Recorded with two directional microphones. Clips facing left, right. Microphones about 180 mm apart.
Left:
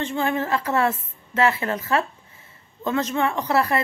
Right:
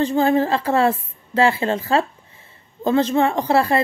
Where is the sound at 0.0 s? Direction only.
35° right (ahead or behind).